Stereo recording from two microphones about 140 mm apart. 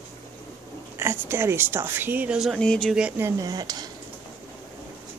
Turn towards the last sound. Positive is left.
turn(degrees=-30)  # may be behind; listen again after turning